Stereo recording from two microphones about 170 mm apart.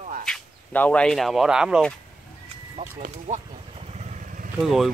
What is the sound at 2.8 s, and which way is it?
Speech, 50° right (ahead or behind).